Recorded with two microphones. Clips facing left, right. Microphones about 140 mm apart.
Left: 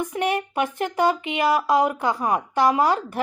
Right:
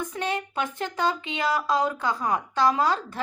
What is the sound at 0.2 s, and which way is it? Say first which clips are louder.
A woman's voice: left 6 dB; 15° left (ahead or behind).